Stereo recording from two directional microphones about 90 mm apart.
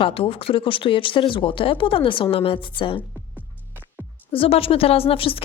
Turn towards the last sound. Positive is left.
turn(degrees=90)